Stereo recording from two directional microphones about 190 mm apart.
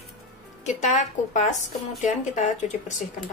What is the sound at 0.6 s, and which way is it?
A woman's voice, 40° left (ahead or behind).